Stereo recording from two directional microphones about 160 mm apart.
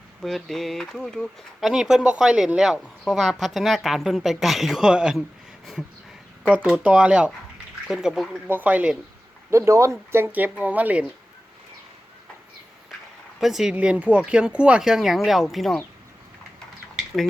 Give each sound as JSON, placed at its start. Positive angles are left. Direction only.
{"t": 0.2, "sound": "speech", "side_deg": 0}
{"t": 6.5, "sound": "speech", "side_deg": -5}
{"t": 13.4, "sound": "speech", "side_deg": 0}